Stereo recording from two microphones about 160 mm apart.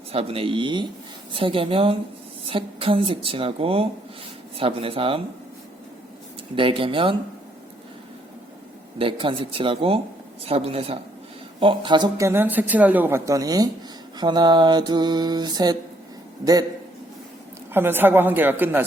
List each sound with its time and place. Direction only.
0.1 s a woman's voice: 35° right (ahead or behind)
6.6 s a woman's voice: 35° right (ahead or behind)
9.0 s a woman's voice: 35° right (ahead or behind)
17.7 s speech: 15° right (ahead or behind)